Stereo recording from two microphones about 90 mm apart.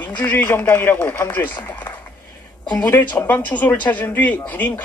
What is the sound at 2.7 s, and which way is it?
A man's voice, 20° left (ahead or behind).